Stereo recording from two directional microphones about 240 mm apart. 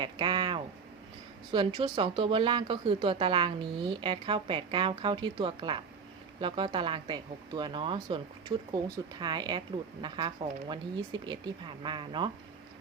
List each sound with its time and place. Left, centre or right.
0.0 s speech: centre